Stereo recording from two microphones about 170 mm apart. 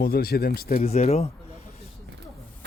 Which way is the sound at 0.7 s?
40° left (ahead or behind).